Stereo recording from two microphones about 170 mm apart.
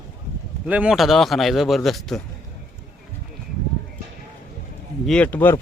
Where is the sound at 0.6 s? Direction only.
5° right (ahead or behind).